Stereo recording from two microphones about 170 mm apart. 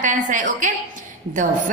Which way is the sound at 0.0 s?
50° right (ahead or behind).